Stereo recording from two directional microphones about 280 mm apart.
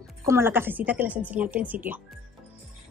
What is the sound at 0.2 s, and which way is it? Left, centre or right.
A woman's voice, centre.